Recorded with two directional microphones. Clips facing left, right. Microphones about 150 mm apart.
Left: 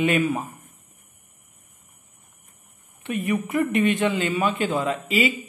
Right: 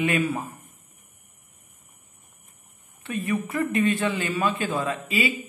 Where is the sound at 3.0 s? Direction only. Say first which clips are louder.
Left 2 dB; 20° left (ahead or behind).